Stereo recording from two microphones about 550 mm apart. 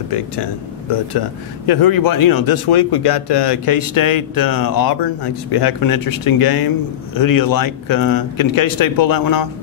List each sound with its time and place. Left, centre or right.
1.7 s speech: left